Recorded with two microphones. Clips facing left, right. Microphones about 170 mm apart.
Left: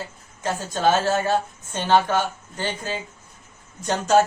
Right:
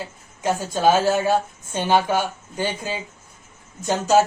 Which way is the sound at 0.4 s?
10° right (ahead or behind).